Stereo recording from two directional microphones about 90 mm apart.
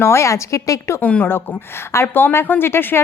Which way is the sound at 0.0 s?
30° left (ahead or behind).